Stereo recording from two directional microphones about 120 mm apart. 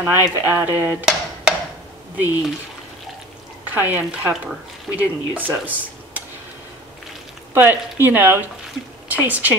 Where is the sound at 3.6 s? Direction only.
15° right (ahead or behind).